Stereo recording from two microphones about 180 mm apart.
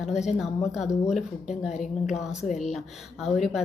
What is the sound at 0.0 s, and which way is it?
A woman's voice, 5° right (ahead or behind).